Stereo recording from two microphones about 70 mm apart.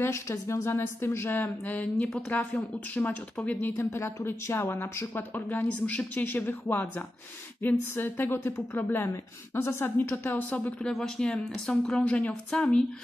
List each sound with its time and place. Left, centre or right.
0.0 s a woman's voice: left
1.3 s speech: left
3.7 s a woman's voice: left
10.8 s a woman's voice: centre